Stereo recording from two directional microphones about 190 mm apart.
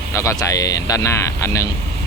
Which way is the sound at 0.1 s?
15° left (ahead or behind).